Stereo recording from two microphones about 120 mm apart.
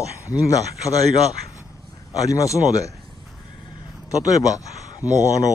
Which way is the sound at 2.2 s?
30° left (ahead or behind).